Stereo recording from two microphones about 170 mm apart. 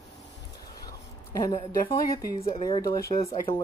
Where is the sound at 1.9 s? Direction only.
35° left (ahead or behind).